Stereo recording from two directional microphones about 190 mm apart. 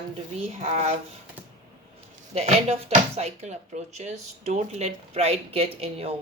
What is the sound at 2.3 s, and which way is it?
A woman's voice, 35° right (ahead or behind).